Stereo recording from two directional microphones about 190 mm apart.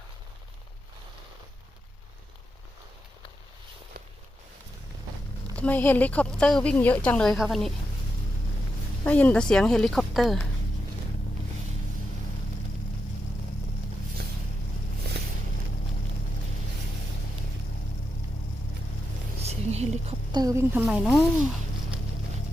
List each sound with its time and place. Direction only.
5.5 s a woman's voice: 10° left (ahead or behind)
9.0 s a woman's voice: 10° left (ahead or behind)
19.4 s a sound: 35° right (ahead or behind)
20.3 s a woman's voice: 20° right (ahead or behind)
21.0 s a woman's voice: centre (ahead or behind)